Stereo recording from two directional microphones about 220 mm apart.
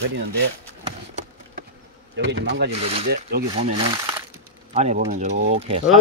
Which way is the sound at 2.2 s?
55° right (ahead or behind).